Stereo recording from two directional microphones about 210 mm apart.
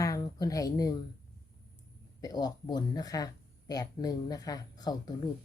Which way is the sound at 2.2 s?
20° left (ahead or behind).